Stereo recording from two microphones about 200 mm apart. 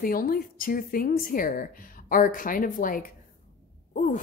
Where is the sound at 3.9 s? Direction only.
40° left (ahead or behind).